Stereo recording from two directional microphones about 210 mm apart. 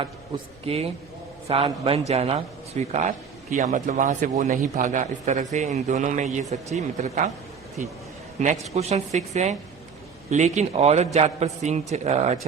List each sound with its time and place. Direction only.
0.6 s a man's voice: 30° right (ahead or behind)